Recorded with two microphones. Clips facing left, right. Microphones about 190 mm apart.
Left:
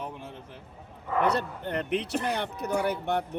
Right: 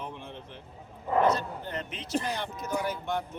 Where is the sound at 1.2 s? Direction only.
65° left (ahead or behind).